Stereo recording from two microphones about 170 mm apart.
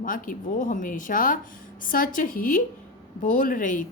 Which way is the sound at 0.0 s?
50° left (ahead or behind).